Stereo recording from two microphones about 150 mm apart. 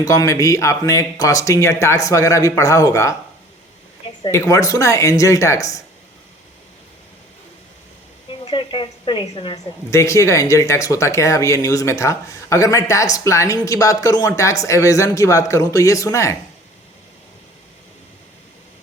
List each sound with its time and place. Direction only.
0.0 s speech: 20° left (ahead or behind)
4.3 s speech: 20° left (ahead or behind)
8.3 s a woman's voice: 35° left (ahead or behind)
9.9 s speech: 20° left (ahead or behind)